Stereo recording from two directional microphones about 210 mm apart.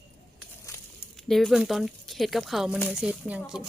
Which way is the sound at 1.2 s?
Centre (ahead or behind).